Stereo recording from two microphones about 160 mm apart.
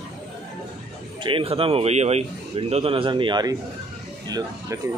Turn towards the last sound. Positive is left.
turn(degrees=-20)  # may be behind; listen again after turning